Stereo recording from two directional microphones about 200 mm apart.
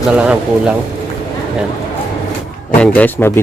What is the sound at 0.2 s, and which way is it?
Speech, 5° right (ahead or behind).